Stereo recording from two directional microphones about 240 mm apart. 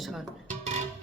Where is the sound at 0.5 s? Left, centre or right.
Right.